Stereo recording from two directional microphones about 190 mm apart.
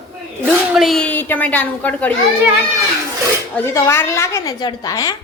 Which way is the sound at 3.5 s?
15° left (ahead or behind).